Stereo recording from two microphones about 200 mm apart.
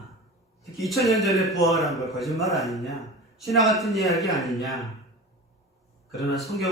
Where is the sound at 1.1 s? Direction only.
Centre (ahead or behind).